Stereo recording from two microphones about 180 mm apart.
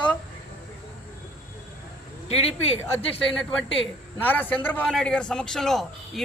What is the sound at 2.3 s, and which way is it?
Speech, 35° left (ahead or behind).